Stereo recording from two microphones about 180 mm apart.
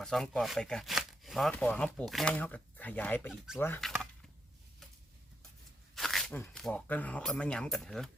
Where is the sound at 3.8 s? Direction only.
Centre (ahead or behind).